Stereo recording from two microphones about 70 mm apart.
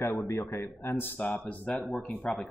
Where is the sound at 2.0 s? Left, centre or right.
Centre.